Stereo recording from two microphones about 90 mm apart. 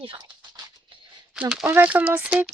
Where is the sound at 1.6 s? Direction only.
20° right (ahead or behind).